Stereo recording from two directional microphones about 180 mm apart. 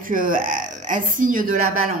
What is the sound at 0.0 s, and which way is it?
A woman's voice, 50° right (ahead or behind).